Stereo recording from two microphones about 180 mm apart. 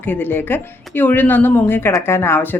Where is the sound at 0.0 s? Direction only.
10° left (ahead or behind).